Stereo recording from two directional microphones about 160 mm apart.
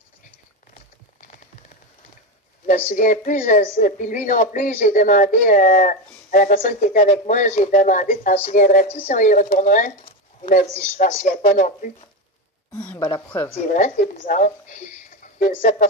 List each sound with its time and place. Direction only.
2.9 s a woman's voice: 55° left (ahead or behind)
8.8 s speech: 40° left (ahead or behind)
13.0 s a woman's voice: 25° left (ahead or behind)
13.7 s speech: 50° left (ahead or behind)